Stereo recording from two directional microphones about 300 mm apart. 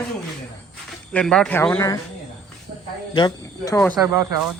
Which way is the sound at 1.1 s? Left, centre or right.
Centre.